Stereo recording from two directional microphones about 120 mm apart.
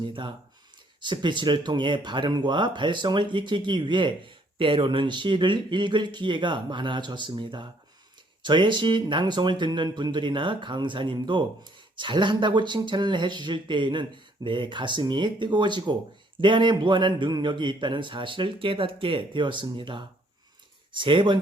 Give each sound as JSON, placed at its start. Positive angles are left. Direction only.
{"t": 0.0, "sound": "speech", "side_deg": -40}